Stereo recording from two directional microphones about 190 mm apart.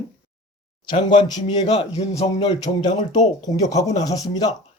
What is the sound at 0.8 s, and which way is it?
Speech, 25° left (ahead or behind).